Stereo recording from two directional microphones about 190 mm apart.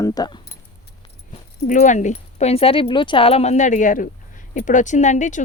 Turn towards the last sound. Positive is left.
turn(degrees=40)  # may be behind; listen again after turning